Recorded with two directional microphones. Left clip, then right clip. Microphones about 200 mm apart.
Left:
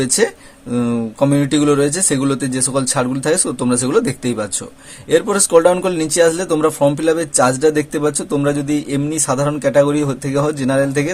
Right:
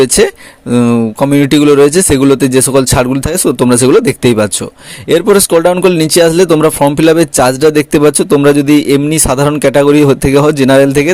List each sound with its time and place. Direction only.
0.2 s speech: 40° right (ahead or behind)